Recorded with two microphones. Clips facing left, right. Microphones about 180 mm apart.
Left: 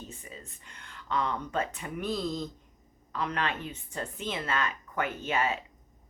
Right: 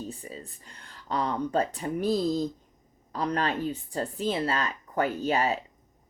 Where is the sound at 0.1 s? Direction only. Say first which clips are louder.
Right 6 dB; 35° right (ahead or behind).